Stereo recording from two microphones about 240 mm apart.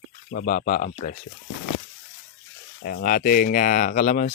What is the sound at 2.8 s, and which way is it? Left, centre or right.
Speech, left.